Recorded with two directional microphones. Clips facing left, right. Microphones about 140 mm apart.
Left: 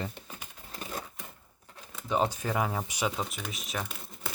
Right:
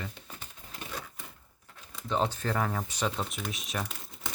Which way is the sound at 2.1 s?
10° left (ahead or behind).